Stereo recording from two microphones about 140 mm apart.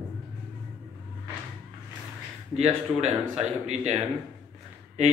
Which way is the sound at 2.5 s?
50° right (ahead or behind).